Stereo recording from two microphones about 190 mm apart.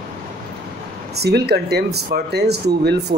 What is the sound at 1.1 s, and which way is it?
Speech, 60° right (ahead or behind).